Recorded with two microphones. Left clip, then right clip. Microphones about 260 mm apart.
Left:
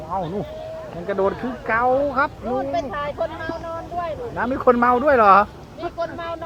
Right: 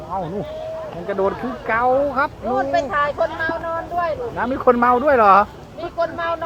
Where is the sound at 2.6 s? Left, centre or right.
Right.